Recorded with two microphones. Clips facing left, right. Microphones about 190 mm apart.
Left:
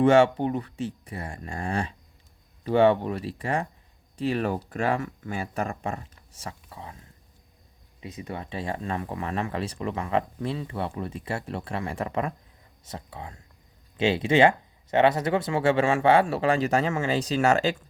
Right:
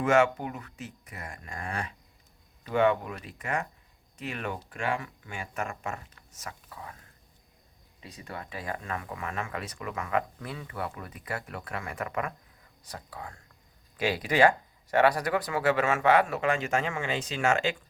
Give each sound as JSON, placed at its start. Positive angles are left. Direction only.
{"t": 0.0, "sound": "speech", "side_deg": 30}
{"t": 8.0, "sound": "speech", "side_deg": 20}